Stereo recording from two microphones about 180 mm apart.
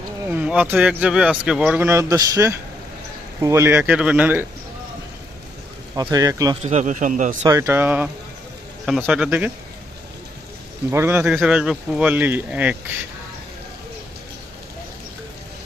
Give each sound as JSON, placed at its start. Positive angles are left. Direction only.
{"t": 0.3, "sound": "speech", "side_deg": -10}
{"t": 6.0, "sound": "speech", "side_deg": -20}
{"t": 6.6, "sound": "speech", "side_deg": -40}
{"t": 7.4, "sound": "speech", "side_deg": -20}
{"t": 10.9, "sound": "speech", "side_deg": -10}